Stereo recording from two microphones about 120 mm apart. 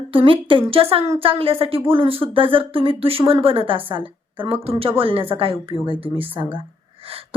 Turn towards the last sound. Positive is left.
turn(degrees=-50)  # may be behind; listen again after turning